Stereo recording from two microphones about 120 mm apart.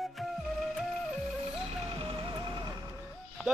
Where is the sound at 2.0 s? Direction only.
45° right (ahead or behind).